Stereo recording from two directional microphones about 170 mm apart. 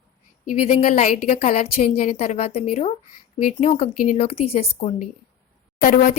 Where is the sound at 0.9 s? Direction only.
50° left (ahead or behind).